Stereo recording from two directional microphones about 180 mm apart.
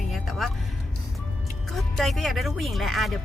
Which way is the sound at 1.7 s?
Centre (ahead or behind).